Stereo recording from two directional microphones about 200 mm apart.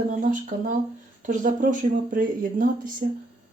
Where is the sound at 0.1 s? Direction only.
40° right (ahead or behind).